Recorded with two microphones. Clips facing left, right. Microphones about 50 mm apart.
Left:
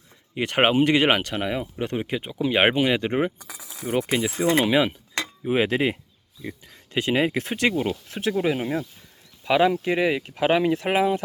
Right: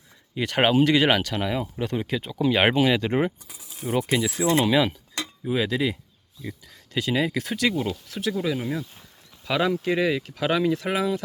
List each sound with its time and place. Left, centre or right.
0.3 s speech: left
3.4 s speech: left
3.8 s speech: centre
4.2 s speech: centre
5.1 s a sound: left
6.4 s speech: left
9.4 s speech: left